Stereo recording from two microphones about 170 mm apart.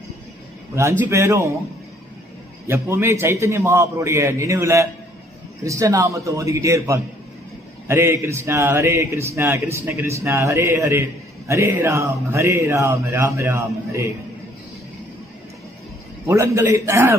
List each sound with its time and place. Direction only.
0.7 s a man's voice: 15° right (ahead or behind)
2.6 s a man's voice: 15° right (ahead or behind)
16.3 s a man's voice: 15° right (ahead or behind)